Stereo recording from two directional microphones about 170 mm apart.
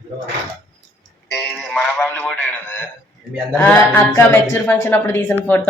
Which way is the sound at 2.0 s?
10° left (ahead or behind).